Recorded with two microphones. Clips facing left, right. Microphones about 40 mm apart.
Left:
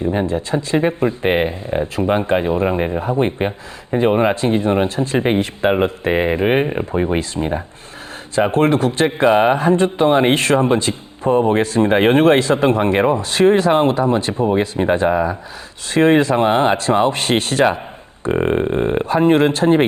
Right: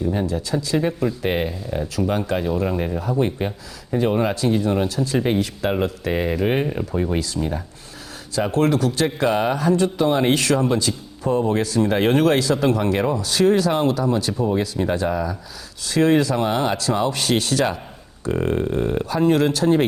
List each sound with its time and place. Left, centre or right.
0.0 s speech: left